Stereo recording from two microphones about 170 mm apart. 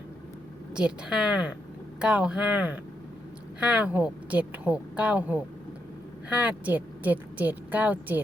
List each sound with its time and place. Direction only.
0.7 s a woman's voice: 5° right (ahead or behind)